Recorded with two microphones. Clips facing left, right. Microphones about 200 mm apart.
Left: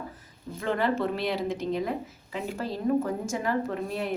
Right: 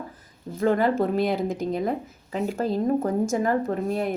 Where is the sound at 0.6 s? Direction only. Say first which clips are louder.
Right 5 dB; 45° right (ahead or behind).